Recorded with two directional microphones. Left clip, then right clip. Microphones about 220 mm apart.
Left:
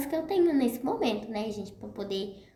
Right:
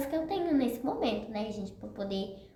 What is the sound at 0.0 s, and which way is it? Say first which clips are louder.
A woman's voice: left 5 dB; 25° left (ahead or behind).